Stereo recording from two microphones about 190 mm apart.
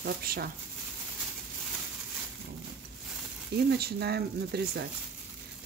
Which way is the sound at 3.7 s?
60° right (ahead or behind).